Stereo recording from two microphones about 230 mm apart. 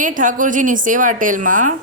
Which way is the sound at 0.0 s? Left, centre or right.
Right.